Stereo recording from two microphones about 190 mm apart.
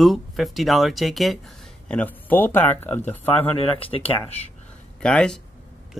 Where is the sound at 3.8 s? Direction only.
30° left (ahead or behind).